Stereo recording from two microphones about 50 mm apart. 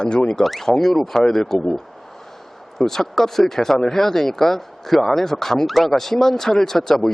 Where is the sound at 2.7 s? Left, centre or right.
Centre.